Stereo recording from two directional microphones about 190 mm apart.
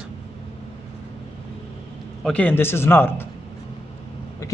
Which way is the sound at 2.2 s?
5° left (ahead or behind).